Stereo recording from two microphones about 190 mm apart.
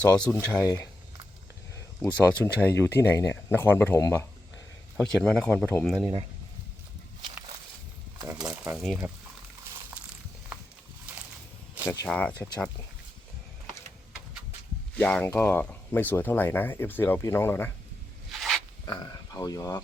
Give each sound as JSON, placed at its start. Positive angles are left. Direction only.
{"t": 0.0, "sound": "speech", "side_deg": 5}
{"t": 8.4, "sound": "speech", "side_deg": -5}
{"t": 11.9, "sound": "speech", "side_deg": 5}
{"t": 14.9, "sound": "speech", "side_deg": 5}
{"t": 18.3, "sound": "a sound", "side_deg": 0}
{"t": 18.9, "sound": "speech", "side_deg": 20}